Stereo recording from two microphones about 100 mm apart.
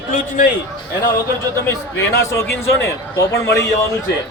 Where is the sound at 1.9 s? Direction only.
30° left (ahead or behind).